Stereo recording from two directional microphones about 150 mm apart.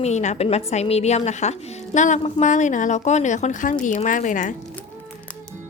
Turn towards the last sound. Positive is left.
turn(degrees=60)  # may be behind; listen again after turning